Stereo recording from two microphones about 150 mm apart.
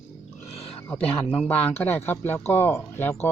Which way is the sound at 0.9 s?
10° left (ahead or behind).